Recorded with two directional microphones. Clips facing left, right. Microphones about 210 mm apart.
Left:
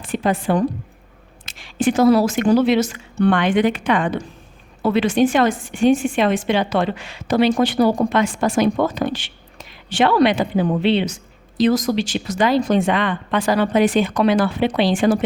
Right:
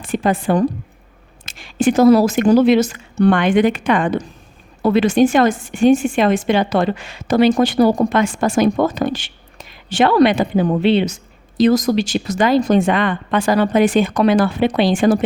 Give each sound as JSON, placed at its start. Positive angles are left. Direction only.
{"t": 0.0, "sound": "a woman's voice", "side_deg": -45}